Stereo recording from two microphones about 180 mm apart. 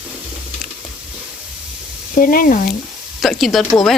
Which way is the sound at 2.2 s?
50° left (ahead or behind).